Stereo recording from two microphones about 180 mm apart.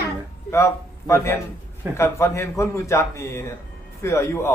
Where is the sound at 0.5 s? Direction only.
15° left (ahead or behind).